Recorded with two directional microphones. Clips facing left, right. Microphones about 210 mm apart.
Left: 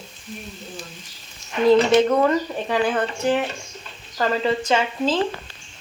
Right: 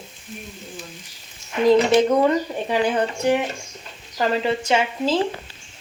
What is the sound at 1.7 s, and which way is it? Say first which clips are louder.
Speech: even; 15° right (ahead or behind).